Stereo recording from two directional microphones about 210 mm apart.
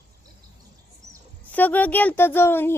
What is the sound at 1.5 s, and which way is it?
Speech, 10° left (ahead or behind).